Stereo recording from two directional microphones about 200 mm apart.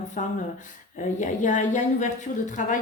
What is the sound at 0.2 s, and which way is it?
A woman's voice, 40° left (ahead or behind).